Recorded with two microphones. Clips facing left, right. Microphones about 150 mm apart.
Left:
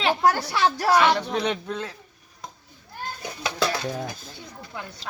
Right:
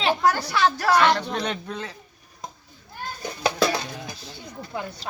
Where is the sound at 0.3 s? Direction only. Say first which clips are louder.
Even; 10° left (ahead or behind).